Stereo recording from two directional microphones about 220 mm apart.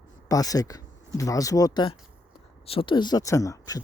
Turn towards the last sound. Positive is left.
turn(degrees=15)  # may be behind; listen again after turning